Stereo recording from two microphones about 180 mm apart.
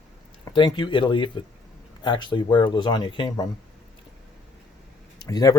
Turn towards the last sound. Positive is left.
turn(degrees=20)  # may be behind; listen again after turning